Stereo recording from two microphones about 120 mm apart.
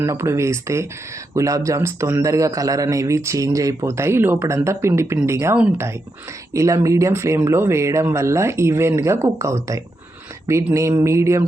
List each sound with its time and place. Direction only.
0.0 s a man's voice: 25° right (ahead or behind)